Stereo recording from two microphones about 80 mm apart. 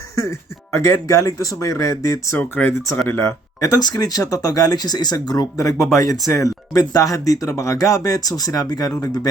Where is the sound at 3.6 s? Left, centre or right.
Left.